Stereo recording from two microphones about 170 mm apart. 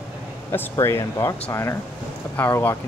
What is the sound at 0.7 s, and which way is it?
Speech, 15° left (ahead or behind).